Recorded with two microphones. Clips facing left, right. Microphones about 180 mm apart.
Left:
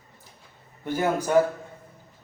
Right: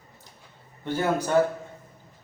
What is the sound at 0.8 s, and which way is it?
Speech, 10° left (ahead or behind).